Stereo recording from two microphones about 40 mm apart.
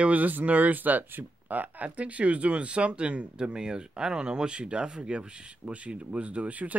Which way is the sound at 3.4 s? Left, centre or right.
Right.